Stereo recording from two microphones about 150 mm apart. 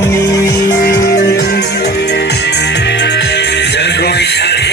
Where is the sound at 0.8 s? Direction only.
90° left.